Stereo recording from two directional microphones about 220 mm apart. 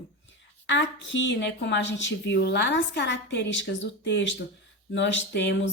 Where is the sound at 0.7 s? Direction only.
55° left (ahead or behind).